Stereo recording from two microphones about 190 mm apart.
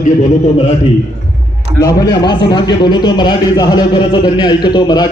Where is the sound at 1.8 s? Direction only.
20° left (ahead or behind).